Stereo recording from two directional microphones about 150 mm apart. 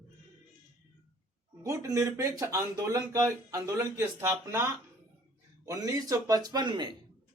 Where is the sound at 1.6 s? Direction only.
20° right (ahead or behind).